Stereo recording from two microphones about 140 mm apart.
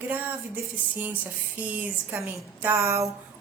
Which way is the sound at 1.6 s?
10° right (ahead or behind).